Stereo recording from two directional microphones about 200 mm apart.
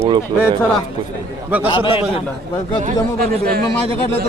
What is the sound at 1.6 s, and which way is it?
Speech, 25° left (ahead or behind).